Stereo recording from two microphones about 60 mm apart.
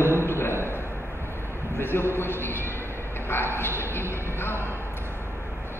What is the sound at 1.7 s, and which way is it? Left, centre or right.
A man's voice, left.